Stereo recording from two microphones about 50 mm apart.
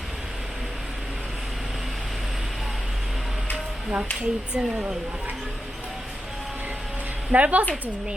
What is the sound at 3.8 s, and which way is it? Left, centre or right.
Speech, right.